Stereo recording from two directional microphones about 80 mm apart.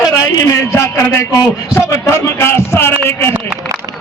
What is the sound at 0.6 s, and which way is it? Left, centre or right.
A man's voice, left.